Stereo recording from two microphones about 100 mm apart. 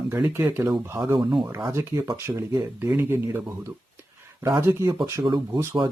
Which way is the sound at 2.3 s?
30° right (ahead or behind).